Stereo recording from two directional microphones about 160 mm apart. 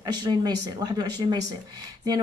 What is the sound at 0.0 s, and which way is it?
A woman's voice, 25° right (ahead or behind).